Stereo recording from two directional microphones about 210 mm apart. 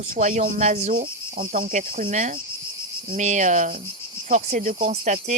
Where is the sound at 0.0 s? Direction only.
35° right (ahead or behind).